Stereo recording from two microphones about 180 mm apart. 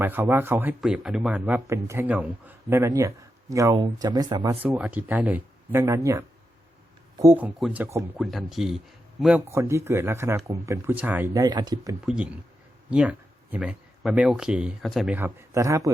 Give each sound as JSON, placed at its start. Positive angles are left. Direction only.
{"t": 0.0, "sound": "speech", "side_deg": -10}
{"t": 4.6, "sound": "speech", "side_deg": -10}
{"t": 8.2, "sound": "speech", "side_deg": 0}
{"t": 9.5, "sound": "speech", "side_deg": -15}
{"t": 12.0, "sound": "speech", "side_deg": -5}